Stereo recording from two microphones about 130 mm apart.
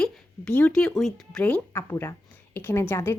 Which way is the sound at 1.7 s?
20° left (ahead or behind).